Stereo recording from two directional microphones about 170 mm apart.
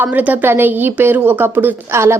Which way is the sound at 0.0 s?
10° right (ahead or behind).